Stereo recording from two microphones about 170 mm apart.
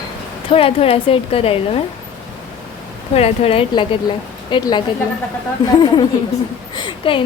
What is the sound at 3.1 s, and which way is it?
A woman's voice, 35° left (ahead or behind).